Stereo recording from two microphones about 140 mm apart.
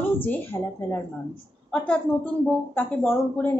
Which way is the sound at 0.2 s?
15° left (ahead or behind).